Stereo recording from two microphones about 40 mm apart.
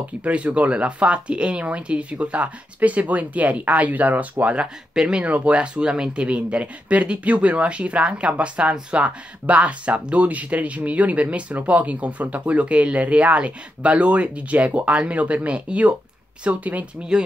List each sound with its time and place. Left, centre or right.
0.2 s speech: right
4.9 s speech: right
5.2 s speech: right